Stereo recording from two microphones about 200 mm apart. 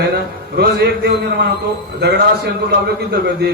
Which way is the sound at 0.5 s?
55° right (ahead or behind).